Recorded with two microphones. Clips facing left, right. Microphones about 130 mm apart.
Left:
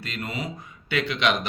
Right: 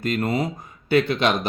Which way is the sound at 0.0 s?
45° right (ahead or behind).